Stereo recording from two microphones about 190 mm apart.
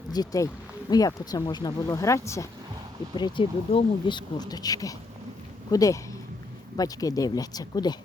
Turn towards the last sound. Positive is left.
turn(degrees=20)  # may be behind; listen again after turning